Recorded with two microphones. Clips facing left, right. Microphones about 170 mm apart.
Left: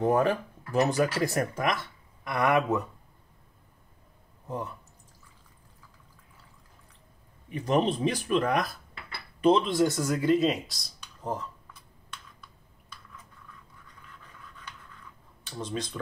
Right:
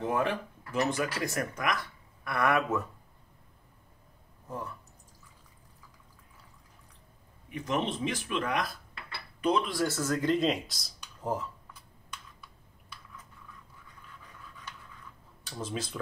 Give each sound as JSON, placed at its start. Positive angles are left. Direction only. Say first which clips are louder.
{"t": 0.0, "sound": "speech", "louder": "left 6 dB", "side_deg": 40}
{"t": 4.5, "sound": "speech", "louder": "left 4 dB", "side_deg": 20}
{"t": 7.5, "sound": "speech", "louder": "left 6 dB", "side_deg": 35}
{"t": 9.4, "sound": "speech", "louder": "left 6 dB", "side_deg": 25}
{"t": 15.5, "sound": "speech", "louder": "left 2 dB", "side_deg": -5}